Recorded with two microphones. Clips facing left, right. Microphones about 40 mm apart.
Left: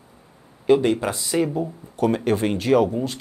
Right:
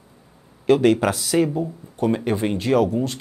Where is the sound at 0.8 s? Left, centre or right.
Right.